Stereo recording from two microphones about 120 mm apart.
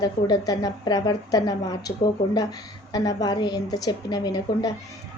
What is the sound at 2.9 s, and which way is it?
A woman's voice, 30° left (ahead or behind).